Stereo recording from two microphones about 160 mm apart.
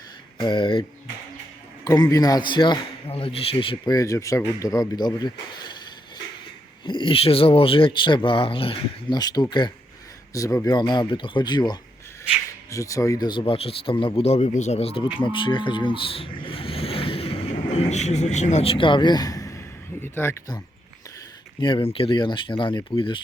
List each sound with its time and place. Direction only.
0.3 s speech: 30° left (ahead or behind)
3.9 s speech: 20° left (ahead or behind)
6.8 s speech: 30° left (ahead or behind); by 20.6 s 15° left (ahead or behind)
21.6 s speech: 30° left (ahead or behind)